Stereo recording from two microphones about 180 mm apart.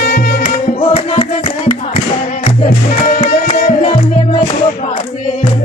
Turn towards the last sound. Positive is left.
turn(degrees=40)  # may be behind; listen again after turning